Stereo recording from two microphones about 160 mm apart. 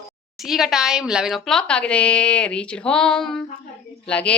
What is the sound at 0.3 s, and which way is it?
A woman's voice, centre (ahead or behind).